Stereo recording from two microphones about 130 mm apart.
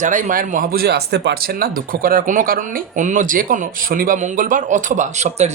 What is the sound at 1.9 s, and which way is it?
Speech, 90° right.